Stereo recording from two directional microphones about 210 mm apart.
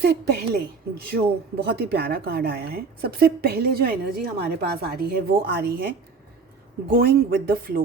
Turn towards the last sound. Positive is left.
turn(degrees=-45)  # may be behind; listen again after turning